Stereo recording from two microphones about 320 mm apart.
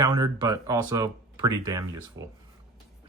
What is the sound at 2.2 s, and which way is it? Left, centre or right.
Speech, right.